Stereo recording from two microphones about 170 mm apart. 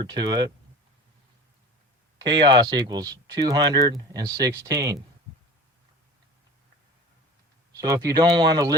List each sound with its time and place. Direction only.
0.0 s speech: 25° right (ahead or behind)
2.2 s speech: 25° right (ahead or behind)
7.7 s speech: 20° right (ahead or behind)